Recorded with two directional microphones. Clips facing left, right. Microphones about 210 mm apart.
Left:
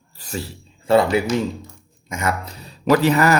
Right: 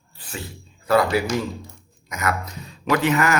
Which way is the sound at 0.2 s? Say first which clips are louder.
Left 5 dB; 40° left (ahead or behind).